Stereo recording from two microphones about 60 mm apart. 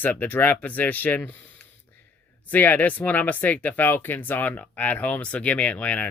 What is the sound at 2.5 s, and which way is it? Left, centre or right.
Speech, left.